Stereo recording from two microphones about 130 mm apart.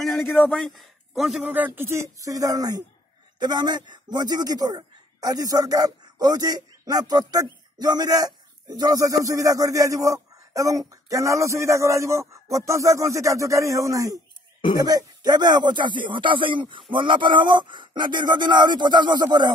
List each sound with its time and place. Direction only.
0.0 s a sound: centre (ahead or behind)
0.5 s a man's voice: centre (ahead or behind)
1.5 s speech: 15° right (ahead or behind); by 19.5 s 35° right (ahead or behind)